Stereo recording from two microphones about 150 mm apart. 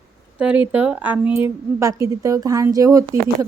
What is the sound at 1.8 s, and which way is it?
A woman's voice, 20° right (ahead or behind).